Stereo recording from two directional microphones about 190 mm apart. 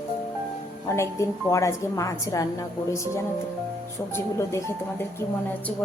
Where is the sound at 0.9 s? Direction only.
15° left (ahead or behind).